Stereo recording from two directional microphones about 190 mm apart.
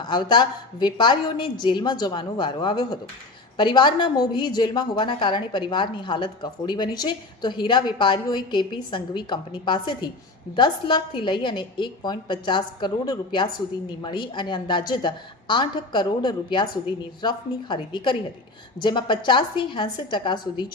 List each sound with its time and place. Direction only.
0.0 s a woman's voice: 25° left (ahead or behind)